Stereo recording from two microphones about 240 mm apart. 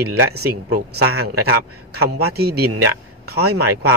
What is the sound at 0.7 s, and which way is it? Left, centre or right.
Speech, right.